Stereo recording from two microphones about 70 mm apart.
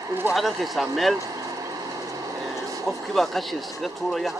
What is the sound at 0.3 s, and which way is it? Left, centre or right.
Speech, centre.